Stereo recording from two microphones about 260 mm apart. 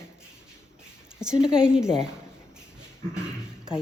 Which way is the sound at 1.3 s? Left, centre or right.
Centre.